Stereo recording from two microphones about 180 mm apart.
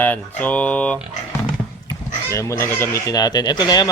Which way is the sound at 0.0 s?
10° left (ahead or behind).